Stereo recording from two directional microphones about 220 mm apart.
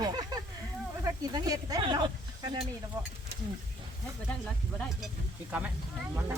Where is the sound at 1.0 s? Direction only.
15° right (ahead or behind).